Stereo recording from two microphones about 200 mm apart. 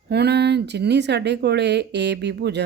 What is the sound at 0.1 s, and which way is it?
Speech, 55° right (ahead or behind).